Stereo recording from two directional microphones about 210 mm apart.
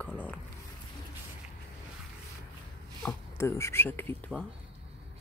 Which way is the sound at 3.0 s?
15° left (ahead or behind).